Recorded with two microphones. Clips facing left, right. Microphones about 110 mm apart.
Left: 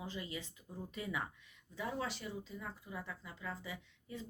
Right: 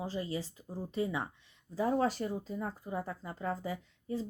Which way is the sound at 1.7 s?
40° right (ahead or behind).